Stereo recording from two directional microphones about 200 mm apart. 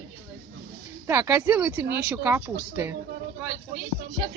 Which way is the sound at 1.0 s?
15° right (ahead or behind).